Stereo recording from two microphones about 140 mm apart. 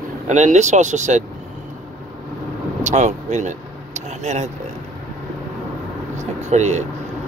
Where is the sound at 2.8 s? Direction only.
60° right (ahead or behind).